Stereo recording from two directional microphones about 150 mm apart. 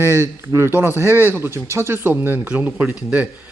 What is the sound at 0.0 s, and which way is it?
Speech, 20° right (ahead or behind).